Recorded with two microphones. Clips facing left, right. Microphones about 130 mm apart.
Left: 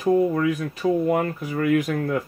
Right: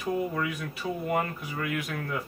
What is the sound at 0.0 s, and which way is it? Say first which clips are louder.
Speech: left 10 dB; 40° left (ahead or behind).